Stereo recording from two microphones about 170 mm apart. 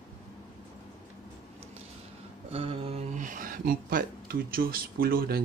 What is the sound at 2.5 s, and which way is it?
Speech, 35° right (ahead or behind).